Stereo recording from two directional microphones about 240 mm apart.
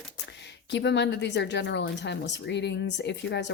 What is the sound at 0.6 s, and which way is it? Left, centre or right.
Speech, left.